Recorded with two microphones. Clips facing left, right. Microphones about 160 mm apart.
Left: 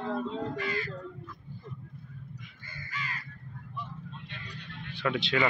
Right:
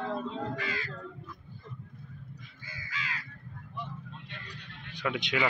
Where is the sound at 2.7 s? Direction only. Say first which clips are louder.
Even; 90° right.